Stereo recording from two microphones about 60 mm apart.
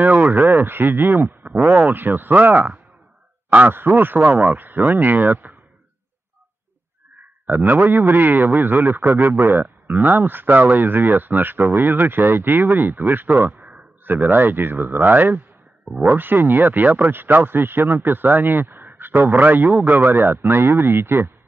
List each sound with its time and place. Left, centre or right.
0.0 s speech: right
3.7 s speech: right
7.4 s speech: right